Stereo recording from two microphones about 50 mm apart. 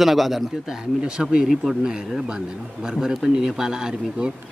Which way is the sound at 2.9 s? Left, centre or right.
Centre.